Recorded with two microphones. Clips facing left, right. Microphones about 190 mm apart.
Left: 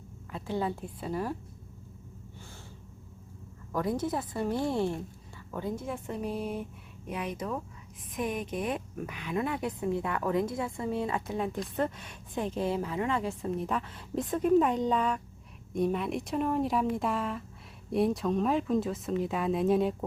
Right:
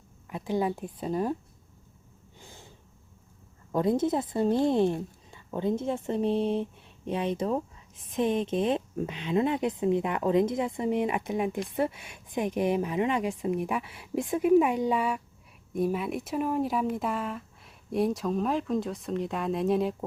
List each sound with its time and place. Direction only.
0.3 s a woman's voice: 15° right (ahead or behind)
3.7 s a woman's voice: 25° right (ahead or behind); by 20.1 s centre (ahead or behind)